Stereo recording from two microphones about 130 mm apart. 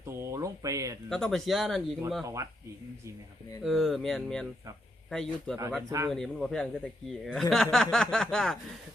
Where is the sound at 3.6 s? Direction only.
Centre (ahead or behind).